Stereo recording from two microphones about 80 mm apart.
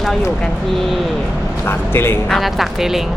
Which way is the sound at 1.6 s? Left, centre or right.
Left.